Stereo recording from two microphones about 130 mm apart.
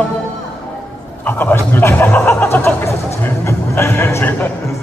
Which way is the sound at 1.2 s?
15° left (ahead or behind).